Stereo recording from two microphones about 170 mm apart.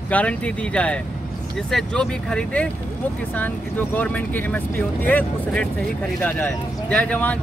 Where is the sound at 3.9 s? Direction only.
10° left (ahead or behind).